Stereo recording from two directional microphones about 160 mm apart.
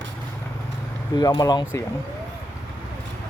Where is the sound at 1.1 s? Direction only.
25° left (ahead or behind).